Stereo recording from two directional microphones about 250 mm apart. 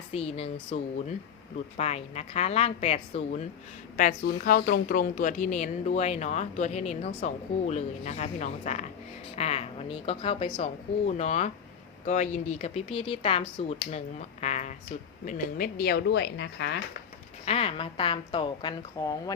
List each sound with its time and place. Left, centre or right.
0.1 s speech: left
17.4 s speech: left